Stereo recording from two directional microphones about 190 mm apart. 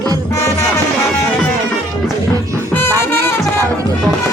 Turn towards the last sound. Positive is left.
turn(degrees=10)  # may be behind; listen again after turning